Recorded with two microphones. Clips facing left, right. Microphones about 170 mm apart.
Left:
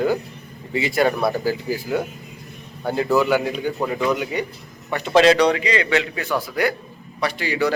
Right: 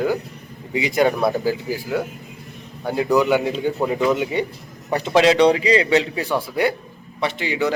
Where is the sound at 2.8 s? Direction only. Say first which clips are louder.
Right 1 dB; 15° right (ahead or behind).